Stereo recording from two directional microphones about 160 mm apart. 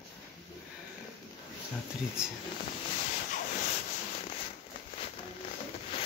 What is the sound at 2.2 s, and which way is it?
Speech, 5° right (ahead or behind).